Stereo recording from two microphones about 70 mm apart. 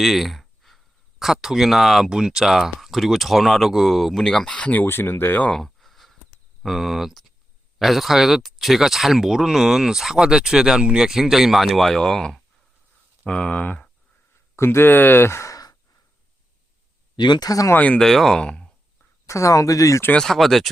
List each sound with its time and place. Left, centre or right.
0.0 s a sound: centre
1.2 s speech: centre; by 5.5 s left
5.5 s a sound: centre
6.6 s speech: centre
14.5 s speech: left
17.2 s speech: left
17.7 s speech: centre
18.0 s speech: centre
19.2 s speech: left
20.1 s speech: centre